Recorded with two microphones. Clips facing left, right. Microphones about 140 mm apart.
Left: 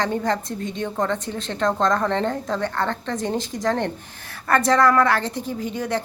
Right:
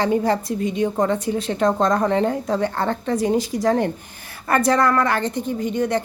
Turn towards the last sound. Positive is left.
turn(degrees=0)  # may be behind; listen again after turning